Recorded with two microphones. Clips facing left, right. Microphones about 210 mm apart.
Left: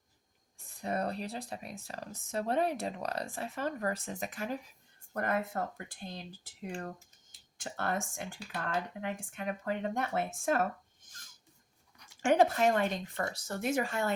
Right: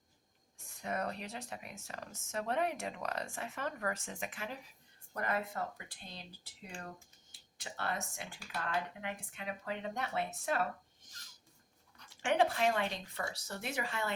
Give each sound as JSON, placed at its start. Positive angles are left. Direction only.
{"t": 0.8, "sound": "speech", "side_deg": 35}
{"t": 12.2, "sound": "speech", "side_deg": 45}